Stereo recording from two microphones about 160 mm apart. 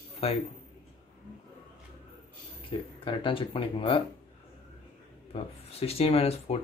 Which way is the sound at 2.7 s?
35° left (ahead or behind).